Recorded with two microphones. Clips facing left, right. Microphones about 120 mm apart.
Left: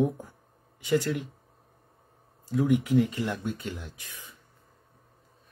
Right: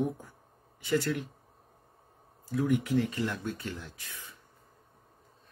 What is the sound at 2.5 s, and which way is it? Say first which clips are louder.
Speech: left 4 dB; 15° left (ahead or behind).